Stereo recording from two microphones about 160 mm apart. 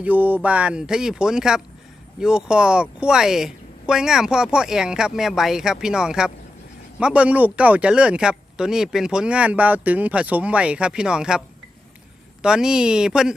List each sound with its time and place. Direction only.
0.0 s speech: 10° right (ahead or behind)